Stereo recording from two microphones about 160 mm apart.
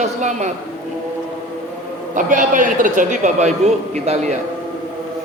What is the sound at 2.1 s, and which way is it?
A man's voice, 55° right (ahead or behind).